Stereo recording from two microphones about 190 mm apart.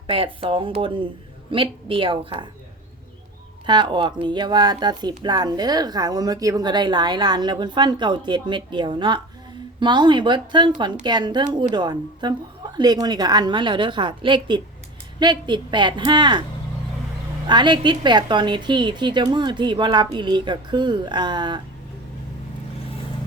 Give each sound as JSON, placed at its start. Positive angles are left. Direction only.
{"t": 0.1, "sound": "speech", "side_deg": -30}
{"t": 3.7, "sound": "speech", "side_deg": -25}
{"t": 17.4, "sound": "speech", "side_deg": -25}